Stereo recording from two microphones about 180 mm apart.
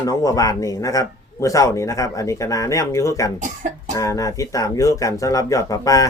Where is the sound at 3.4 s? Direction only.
45° right (ahead or behind).